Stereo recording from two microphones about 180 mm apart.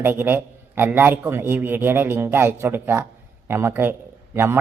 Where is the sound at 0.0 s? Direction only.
10° right (ahead or behind).